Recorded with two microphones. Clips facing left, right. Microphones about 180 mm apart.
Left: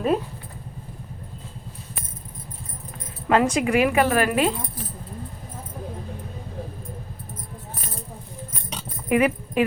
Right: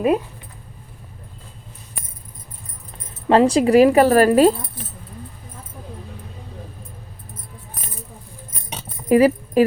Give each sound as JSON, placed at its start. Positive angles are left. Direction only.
{"t": 3.2, "sound": "speech", "side_deg": -30}
{"t": 9.0, "sound": "keys jangling", "side_deg": -35}